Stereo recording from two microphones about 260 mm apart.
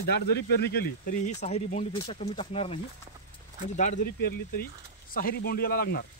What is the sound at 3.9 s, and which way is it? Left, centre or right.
Speech, left.